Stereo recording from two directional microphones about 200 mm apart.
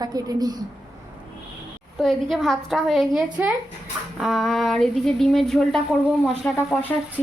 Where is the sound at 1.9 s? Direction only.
Centre (ahead or behind).